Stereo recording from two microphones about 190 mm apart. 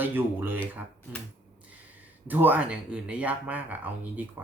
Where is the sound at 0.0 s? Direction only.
10° right (ahead or behind).